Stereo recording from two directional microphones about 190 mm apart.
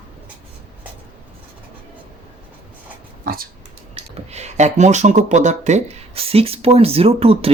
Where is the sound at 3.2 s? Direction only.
50° right (ahead or behind).